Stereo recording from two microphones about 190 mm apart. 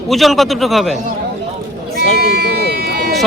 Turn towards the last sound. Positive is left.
turn(degrees=-55)  # may be behind; listen again after turning